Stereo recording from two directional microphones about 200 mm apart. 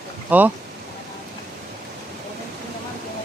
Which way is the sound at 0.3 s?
10° right (ahead or behind).